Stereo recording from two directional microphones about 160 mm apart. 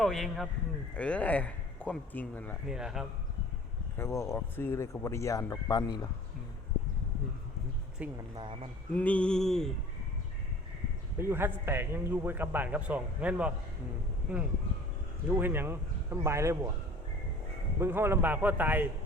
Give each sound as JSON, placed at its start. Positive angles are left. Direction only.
{"t": 0.0, "sound": "a sound", "side_deg": 0}
{"t": 0.9, "sound": "speech", "side_deg": 10}
{"t": 2.6, "sound": "a sound", "side_deg": -5}
{"t": 3.9, "sound": "speech", "side_deg": 20}
{"t": 8.0, "sound": "a man's voice", "side_deg": -10}
{"t": 8.4, "sound": "speech", "side_deg": -30}
{"t": 9.0, "sound": "a sound", "side_deg": 10}
{"t": 11.2, "sound": "a man's voice", "side_deg": -15}
{"t": 17.7, "sound": "a man's voice", "side_deg": -15}